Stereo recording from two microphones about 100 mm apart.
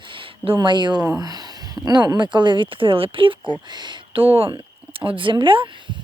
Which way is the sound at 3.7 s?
45° right (ahead or behind).